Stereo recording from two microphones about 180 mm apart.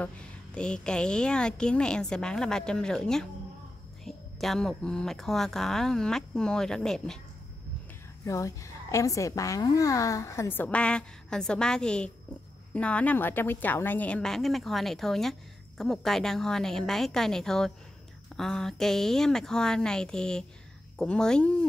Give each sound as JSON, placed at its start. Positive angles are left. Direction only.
{"t": 0.0, "sound": "a woman's voice", "side_deg": 5}
{"t": 8.3, "sound": "a woman's voice", "side_deg": 15}